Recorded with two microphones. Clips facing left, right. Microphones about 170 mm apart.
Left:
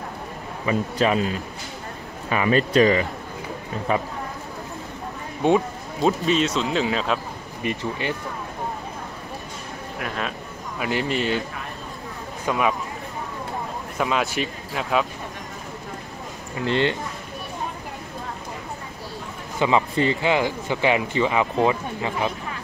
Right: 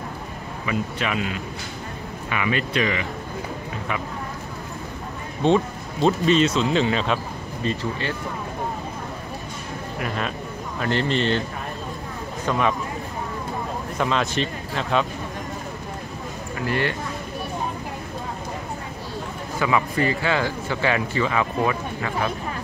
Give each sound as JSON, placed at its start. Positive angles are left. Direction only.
{"t": 0.7, "sound": "speech", "side_deg": 35}
{"t": 5.4, "sound": "a man's voice", "side_deg": 15}
{"t": 6.0, "sound": "speech", "side_deg": 0}
{"t": 7.6, "sound": "a man's voice", "side_deg": 15}
{"t": 9.9, "sound": "a man's voice", "side_deg": 0}
{"t": 12.4, "sound": "speech", "side_deg": 10}
{"t": 13.9, "sound": "speech", "side_deg": 5}
{"t": 16.6, "sound": "speech", "side_deg": 25}
{"t": 19.6, "sound": "speech", "side_deg": 20}